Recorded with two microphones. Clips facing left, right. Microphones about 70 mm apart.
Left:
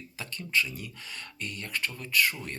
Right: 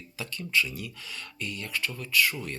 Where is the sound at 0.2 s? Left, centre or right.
Left.